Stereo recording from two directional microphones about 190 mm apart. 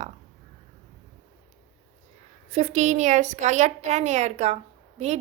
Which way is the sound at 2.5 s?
35° right (ahead or behind).